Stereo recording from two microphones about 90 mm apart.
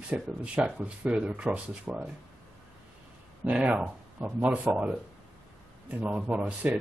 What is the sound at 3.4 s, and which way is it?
Speech, 15° right (ahead or behind).